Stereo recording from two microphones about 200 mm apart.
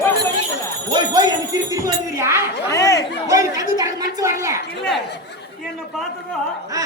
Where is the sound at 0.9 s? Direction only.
20° right (ahead or behind).